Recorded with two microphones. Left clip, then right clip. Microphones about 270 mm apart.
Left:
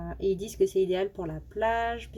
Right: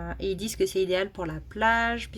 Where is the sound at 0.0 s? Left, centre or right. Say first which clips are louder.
Left 2 dB; right.